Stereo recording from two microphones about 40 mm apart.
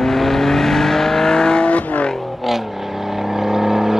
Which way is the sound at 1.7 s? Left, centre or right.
Left.